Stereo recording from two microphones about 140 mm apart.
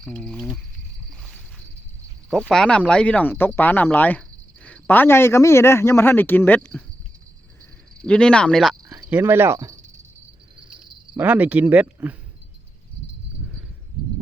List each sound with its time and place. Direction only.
0.0 s speech: 5° left (ahead or behind)
1.2 s a sound: centre (ahead or behind)
2.3 s speech: 5° left (ahead or behind)
8.0 s speech: 10° left (ahead or behind)
9.0 s speech: 15° right (ahead or behind)
11.2 s speech: 10° right (ahead or behind)